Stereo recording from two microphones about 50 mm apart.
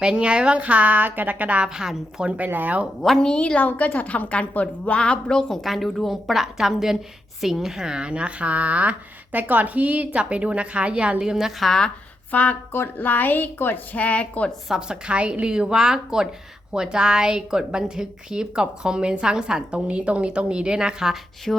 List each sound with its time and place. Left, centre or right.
0.0 s speech: centre
1.6 s a woman's voice: centre
2.2 s speech: right
3.2 s a woman's voice: centre
3.6 s a woman's voice: left; by 5.5 s centre
5.6 s a woman's voice: centre; by 11.2 s right
11.2 s a woman's voice: centre
12.3 s a woman's voice: left
13.0 s a woman's voice: left
13.9 s a woman's voice: left
14.8 s a woman's voice: centre
21.5 s music: centre